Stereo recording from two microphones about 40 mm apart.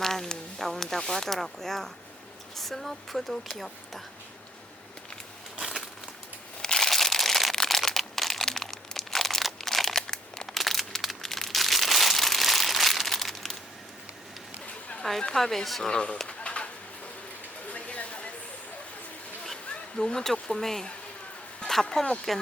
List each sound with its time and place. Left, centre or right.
0.0 s speech: centre
6.6 s crushing: centre
6.9 s crumpling: centre
15.3 s speech: centre
15.8 s speech: left
16.4 s pigeon: left
17.7 s a sound: left
20.0 s speech: centre
22.0 s speech: left